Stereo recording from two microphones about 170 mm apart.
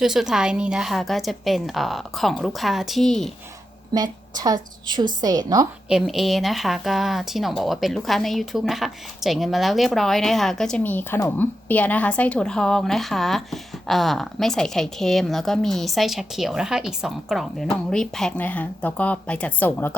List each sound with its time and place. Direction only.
0.0 s a woman's voice: centre (ahead or behind)
3.9 s a woman's voice: 25° right (ahead or behind)
5.9 s a woman's voice: centre (ahead or behind)